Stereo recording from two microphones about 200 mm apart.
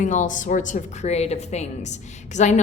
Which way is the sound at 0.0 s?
40° left (ahead or behind).